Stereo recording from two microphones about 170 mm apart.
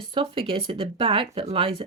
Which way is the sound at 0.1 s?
30° right (ahead or behind).